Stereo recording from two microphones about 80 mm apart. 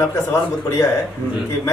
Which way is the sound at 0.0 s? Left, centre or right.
Left.